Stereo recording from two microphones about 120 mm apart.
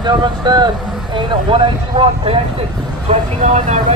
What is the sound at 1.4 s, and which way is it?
Speech, 50° right (ahead or behind).